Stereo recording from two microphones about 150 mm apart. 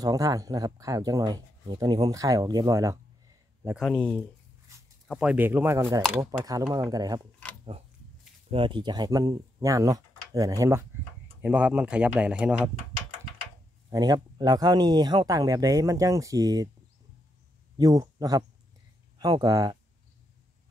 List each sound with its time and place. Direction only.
0.0 s speech: 25° right (ahead or behind)
3.7 s speech: 5° left (ahead or behind)
5.1 s speech: 10° right (ahead or behind); by 7.2 s 25° right (ahead or behind)
8.5 s speech: 35° right (ahead or behind)
11.4 s speech: 10° right (ahead or behind)
13.8 s speech: 25° right (ahead or behind)
17.7 s speech: 25° right (ahead or behind)